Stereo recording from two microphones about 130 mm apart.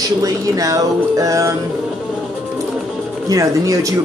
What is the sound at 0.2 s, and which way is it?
Speech, 25° right (ahead or behind).